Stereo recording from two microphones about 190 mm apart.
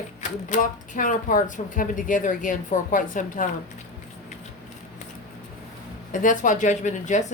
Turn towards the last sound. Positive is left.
turn(degrees=40)  # may be behind; listen again after turning